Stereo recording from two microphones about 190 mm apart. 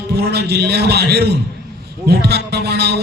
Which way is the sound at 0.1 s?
60° right (ahead or behind).